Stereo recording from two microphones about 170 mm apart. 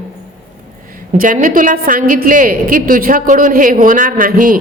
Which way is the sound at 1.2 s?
50° right (ahead or behind).